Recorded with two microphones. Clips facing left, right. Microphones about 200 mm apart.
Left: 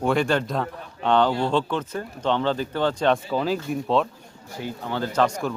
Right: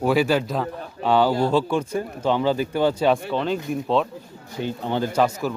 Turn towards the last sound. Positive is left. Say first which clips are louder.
# right 1 dB
turn(degrees=-10)  # may be behind; listen again after turning